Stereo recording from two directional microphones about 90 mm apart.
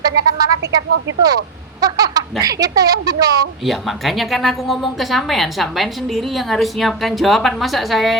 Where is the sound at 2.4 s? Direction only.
40° right (ahead or behind).